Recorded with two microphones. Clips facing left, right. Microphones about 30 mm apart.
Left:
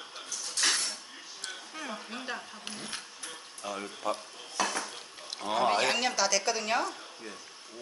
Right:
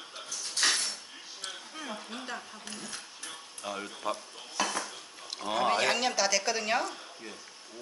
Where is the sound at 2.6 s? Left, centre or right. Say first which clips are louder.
Left 2 dB; left.